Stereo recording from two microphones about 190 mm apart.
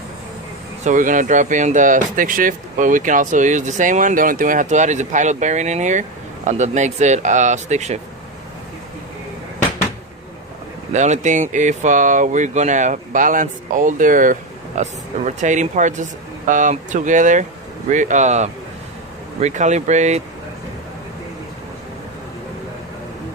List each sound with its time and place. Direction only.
0.9 s speech: 45° right (ahead or behind)
10.9 s speech: 40° right (ahead or behind)